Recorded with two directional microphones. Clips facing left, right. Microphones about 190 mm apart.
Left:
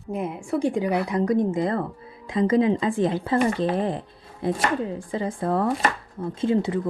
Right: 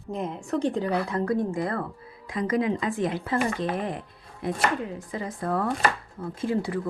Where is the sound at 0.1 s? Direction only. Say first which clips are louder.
Left 2 dB; 10° left (ahead or behind).